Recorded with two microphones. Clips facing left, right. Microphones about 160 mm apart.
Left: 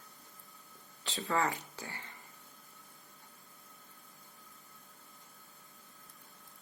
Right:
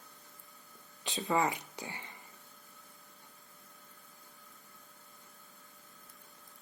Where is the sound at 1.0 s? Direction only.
20° right (ahead or behind).